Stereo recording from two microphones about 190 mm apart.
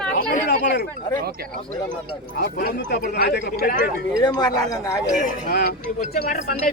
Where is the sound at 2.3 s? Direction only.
55° left (ahead or behind).